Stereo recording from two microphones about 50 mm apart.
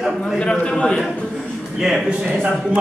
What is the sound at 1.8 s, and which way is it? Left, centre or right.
Speech, centre.